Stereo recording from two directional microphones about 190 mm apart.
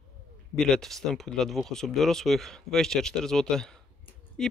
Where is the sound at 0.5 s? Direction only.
Centre (ahead or behind).